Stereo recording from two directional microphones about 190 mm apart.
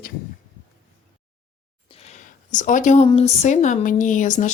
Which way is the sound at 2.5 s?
40° left (ahead or behind).